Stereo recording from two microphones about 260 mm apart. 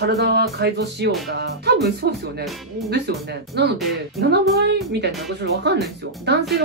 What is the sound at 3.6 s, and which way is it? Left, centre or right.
Speech, right.